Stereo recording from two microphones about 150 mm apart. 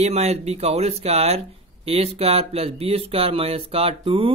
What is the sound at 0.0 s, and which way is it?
Speech, 45° right (ahead or behind).